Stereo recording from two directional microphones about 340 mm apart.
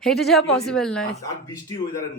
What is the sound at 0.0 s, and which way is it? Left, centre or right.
A woman's voice, centre.